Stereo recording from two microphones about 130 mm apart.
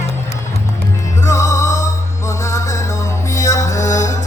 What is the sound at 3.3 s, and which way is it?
Music, 25° left (ahead or behind).